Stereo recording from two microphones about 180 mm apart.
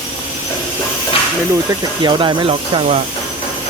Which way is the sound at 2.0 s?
25° right (ahead or behind).